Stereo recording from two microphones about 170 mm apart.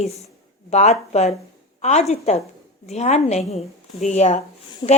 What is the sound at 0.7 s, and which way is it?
A woman's voice, 40° left (ahead or behind).